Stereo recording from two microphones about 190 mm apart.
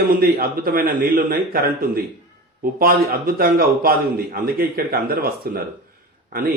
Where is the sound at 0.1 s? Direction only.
50° right (ahead or behind).